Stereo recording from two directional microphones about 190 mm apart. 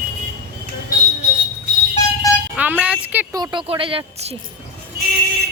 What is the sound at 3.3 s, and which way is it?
Speech, 20° right (ahead or behind).